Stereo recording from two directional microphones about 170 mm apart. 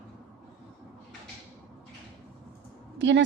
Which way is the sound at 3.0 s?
90° right.